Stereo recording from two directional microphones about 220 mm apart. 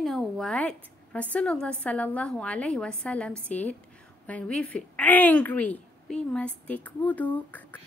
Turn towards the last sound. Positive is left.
turn(degrees=5)  # may be behind; listen again after turning